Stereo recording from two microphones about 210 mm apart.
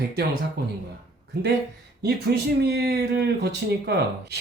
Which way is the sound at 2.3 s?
50° right (ahead or behind).